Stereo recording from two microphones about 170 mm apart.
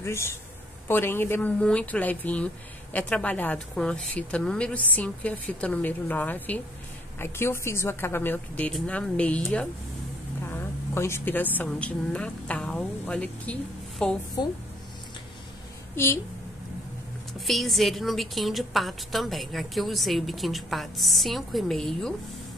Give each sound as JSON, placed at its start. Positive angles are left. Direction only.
{"t": 0.0, "sound": "a woman's voice", "side_deg": 15}
{"t": 14.4, "sound": "speech", "side_deg": 25}
{"t": 17.3, "sound": "a woman's voice", "side_deg": 0}